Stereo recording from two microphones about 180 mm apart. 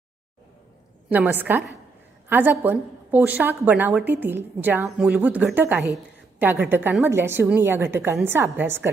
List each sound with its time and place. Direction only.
1.1 s a woman's voice: 10° right (ahead or behind)